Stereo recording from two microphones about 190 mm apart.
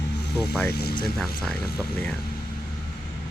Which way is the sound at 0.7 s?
55° left (ahead or behind).